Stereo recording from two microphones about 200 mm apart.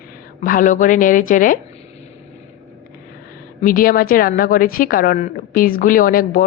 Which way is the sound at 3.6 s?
45° left (ahead or behind).